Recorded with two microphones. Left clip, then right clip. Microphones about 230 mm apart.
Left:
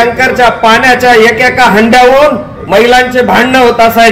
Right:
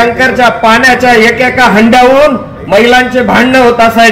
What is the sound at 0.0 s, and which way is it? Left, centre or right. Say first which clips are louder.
A man's voice: even; left.